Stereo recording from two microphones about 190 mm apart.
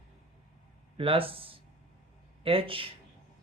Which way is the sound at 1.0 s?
30° right (ahead or behind).